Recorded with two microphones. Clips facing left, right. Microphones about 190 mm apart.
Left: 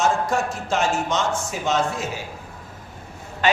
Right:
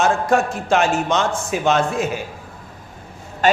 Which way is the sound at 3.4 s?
45° right (ahead or behind).